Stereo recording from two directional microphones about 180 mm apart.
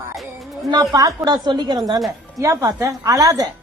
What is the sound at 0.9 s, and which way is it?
A woman's voice, 20° right (ahead or behind).